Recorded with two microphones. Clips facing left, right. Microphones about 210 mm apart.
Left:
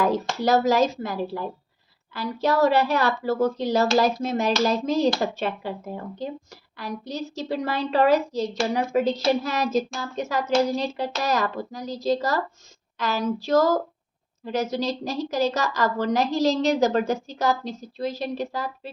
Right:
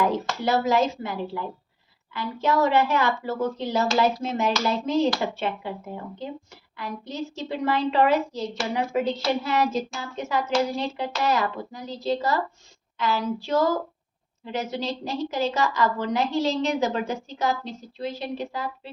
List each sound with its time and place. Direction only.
0.0 s a woman's voice: 40° left (ahead or behind)